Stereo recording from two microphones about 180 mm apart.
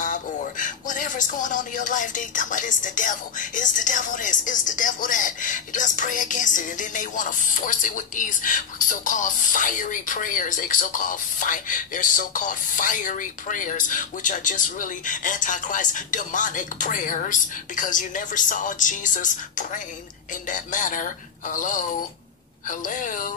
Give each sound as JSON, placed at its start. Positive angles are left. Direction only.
{"t": 0.0, "sound": "speech", "side_deg": 45}